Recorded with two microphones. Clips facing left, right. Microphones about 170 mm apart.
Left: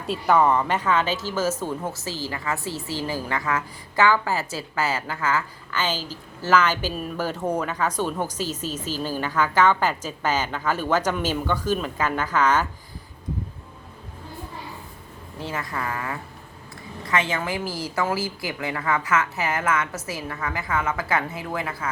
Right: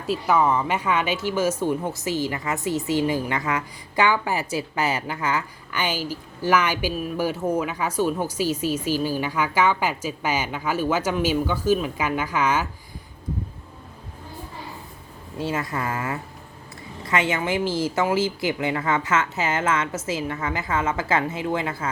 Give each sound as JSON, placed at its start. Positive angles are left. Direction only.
{"t": 0.1, "sound": "speech", "side_deg": -5}
{"t": 15.4, "sound": "a woman's voice", "side_deg": -20}